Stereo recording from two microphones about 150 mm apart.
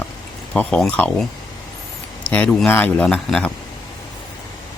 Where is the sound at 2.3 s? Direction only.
5° left (ahead or behind).